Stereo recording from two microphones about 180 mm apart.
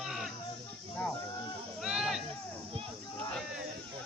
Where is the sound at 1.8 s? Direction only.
Centre (ahead or behind).